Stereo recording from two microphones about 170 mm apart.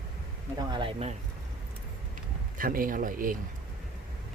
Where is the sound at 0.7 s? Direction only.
30° right (ahead or behind).